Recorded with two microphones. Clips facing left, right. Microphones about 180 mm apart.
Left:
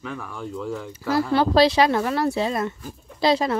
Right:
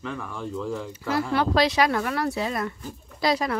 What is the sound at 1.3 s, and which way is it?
Speech, 30° left (ahead or behind).